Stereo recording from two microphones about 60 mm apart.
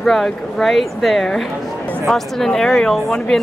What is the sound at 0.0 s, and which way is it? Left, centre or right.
Speech, centre.